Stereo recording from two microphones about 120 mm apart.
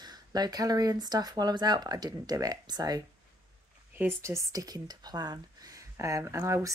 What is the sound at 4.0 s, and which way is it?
Speech, 20° right (ahead or behind).